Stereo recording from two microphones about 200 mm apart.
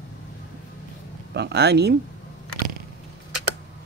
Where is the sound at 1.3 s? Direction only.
55° right (ahead or behind).